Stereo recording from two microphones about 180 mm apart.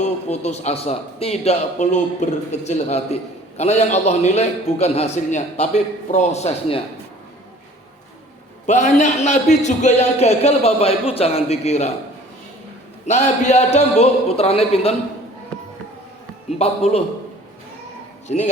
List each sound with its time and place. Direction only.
0.3 s a man's voice: 40° left (ahead or behind)
8.6 s a man's voice: 40° left (ahead or behind)
13.1 s a man's voice: 40° left (ahead or behind)
16.6 s a man's voice: 35° left (ahead or behind)
18.3 s a man's voice: 40° left (ahead or behind)